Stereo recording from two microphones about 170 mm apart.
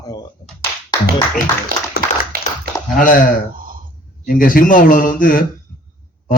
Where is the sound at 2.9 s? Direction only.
55° left (ahead or behind).